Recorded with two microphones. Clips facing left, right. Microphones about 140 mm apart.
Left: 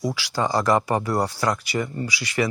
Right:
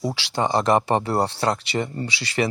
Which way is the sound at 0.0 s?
25° right (ahead or behind).